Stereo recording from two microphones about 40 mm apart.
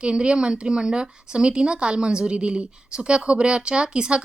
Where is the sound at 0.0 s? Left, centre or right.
Right.